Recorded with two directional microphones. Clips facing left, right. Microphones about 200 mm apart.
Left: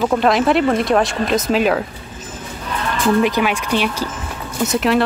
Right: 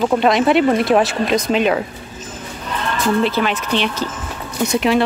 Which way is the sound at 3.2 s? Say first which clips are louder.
Left 1 dB; 15° left (ahead or behind).